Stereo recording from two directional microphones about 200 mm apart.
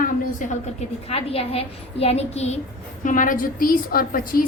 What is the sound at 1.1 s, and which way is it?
A woman's voice, 30° left (ahead or behind).